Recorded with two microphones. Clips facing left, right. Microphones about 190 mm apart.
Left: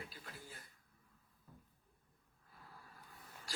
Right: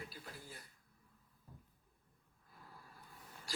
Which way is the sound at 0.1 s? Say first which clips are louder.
Right 2 dB; 40° right (ahead or behind).